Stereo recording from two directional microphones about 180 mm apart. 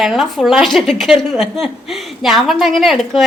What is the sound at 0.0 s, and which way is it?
A woman's voice, centre (ahead or behind).